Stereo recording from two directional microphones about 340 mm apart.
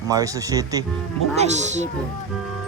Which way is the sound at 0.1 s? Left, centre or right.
Centre.